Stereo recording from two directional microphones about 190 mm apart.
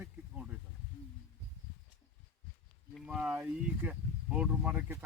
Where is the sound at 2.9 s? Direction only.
Centre (ahead or behind).